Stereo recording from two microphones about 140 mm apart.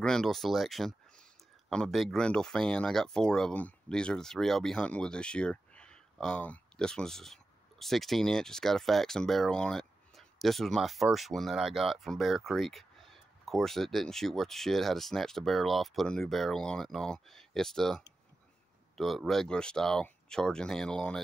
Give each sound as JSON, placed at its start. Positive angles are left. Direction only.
{"t": 0.0, "sound": "speech", "side_deg": 5}